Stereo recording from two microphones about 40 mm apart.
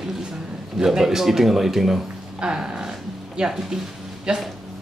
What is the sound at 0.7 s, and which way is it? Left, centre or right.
Speech, centre.